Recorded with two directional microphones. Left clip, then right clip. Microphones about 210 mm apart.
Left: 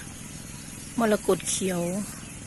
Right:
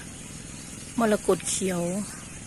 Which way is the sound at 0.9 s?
5° right (ahead or behind).